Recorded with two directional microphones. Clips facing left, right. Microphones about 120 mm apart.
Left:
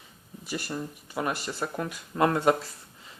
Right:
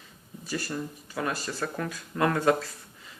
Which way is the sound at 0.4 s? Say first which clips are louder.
Right 1 dB; 15° left (ahead or behind).